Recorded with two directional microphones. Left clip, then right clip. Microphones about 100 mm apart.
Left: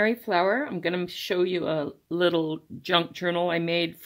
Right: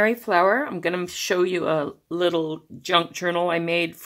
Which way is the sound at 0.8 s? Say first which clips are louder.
Right 4 dB; 30° left (ahead or behind).